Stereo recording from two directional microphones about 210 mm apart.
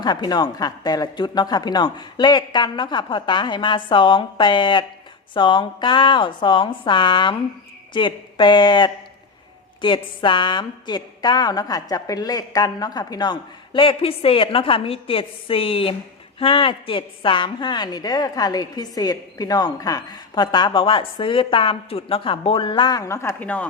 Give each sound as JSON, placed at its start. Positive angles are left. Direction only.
{"t": 0.0, "sound": "a woman's voice", "side_deg": 20}